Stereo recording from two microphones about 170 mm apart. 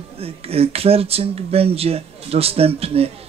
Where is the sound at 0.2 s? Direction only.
35° right (ahead or behind).